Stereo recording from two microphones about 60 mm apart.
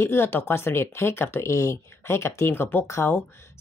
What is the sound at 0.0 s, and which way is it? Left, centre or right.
Speech, left.